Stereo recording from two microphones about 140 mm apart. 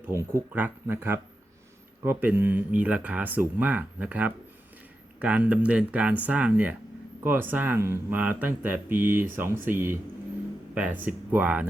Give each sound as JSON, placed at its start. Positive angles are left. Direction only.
{"t": 0.1, "sound": "speech", "side_deg": -20}